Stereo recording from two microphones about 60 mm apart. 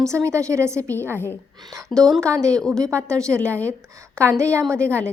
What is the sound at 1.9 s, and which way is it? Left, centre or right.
Speech, centre.